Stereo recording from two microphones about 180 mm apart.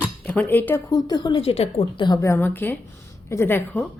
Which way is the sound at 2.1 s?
15° left (ahead or behind).